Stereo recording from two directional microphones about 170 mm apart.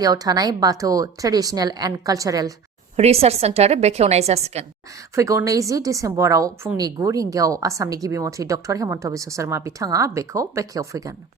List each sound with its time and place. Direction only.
0.0 s a woman's voice: 20° right (ahead or behind)
2.9 s a woman's voice: 40° right (ahead or behind)
5.1 s a woman's voice: 15° right (ahead or behind)